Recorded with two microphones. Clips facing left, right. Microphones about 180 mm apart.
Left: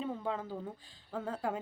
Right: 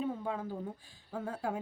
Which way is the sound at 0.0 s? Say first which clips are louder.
Right 1 dB; 10° right (ahead or behind).